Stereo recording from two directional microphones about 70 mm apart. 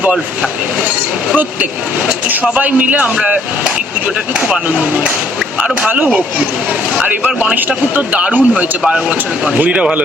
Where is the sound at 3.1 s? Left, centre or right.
Centre.